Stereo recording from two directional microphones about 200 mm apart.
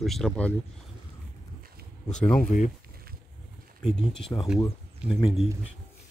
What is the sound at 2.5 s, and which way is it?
Speech, 40° left (ahead or behind).